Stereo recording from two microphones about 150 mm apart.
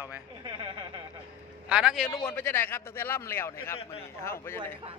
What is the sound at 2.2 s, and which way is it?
A man's voice, 15° left (ahead or behind).